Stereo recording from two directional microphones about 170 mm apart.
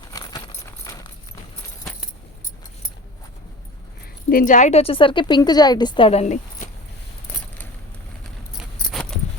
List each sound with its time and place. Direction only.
0.1 s a sound: 20° left (ahead or behind)
4.3 s speech: 50° left (ahead or behind)
8.9 s keys jangling: 5° left (ahead or behind)